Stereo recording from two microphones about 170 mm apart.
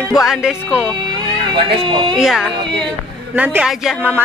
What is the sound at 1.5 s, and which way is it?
Speech, 25° right (ahead or behind).